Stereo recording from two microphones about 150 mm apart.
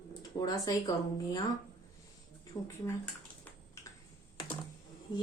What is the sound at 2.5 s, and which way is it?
Speech, 25° left (ahead or behind).